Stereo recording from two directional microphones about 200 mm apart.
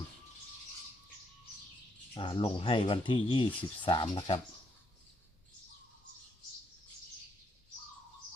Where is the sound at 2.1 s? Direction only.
25° left (ahead or behind).